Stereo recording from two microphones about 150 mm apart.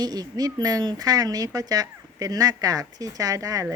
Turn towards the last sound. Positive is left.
turn(degrees=-25)  # may be behind; listen again after turning